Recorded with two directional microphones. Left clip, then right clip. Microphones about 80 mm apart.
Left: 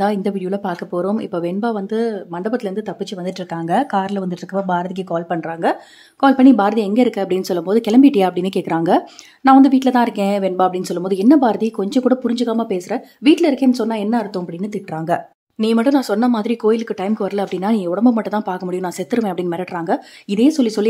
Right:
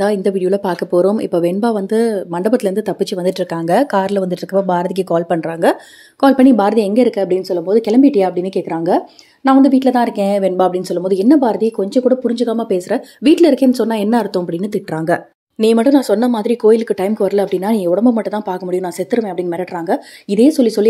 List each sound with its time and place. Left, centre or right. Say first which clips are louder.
0.0 s speech: right 4 dB; centre; by 3.4 s right
3.6 s a woman's voice: right 4 dB; right
7.1 s speech: right 4 dB; centre
7.4 s speech: right 2 dB; left
7.7 s speech: right 1 dB; centre
9.4 s speech: even; centre
12.9 s a woman's voice: right 1 dB; right
13.8 s speech: right 4 dB; right
14.6 s a woman's voice: right 5 dB; right; by 20.9 s centre